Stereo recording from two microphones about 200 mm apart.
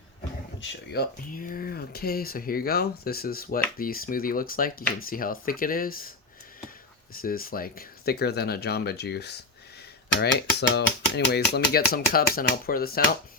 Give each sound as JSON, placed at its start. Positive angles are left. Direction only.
{"t": 0.6, "sound": "speech", "side_deg": 55}
{"t": 7.2, "sound": "speech", "side_deg": 45}
{"t": 10.2, "sound": "dishes", "side_deg": 55}
{"t": 11.3, "sound": "speech", "side_deg": 50}